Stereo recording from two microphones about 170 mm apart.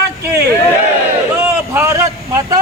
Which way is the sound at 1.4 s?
15° right (ahead or behind).